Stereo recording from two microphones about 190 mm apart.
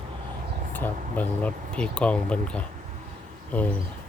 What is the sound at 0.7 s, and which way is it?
Speech, 10° left (ahead or behind).